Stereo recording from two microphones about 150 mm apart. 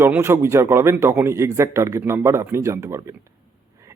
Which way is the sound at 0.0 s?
15° right (ahead or behind).